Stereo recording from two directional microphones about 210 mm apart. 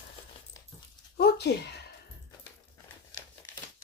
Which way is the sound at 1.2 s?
50° left (ahead or behind).